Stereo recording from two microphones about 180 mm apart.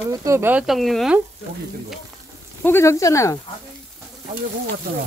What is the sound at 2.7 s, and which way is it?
Speech, 15° left (ahead or behind).